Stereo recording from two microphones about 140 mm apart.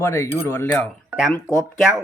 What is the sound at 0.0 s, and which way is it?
Speech, 20° left (ahead or behind).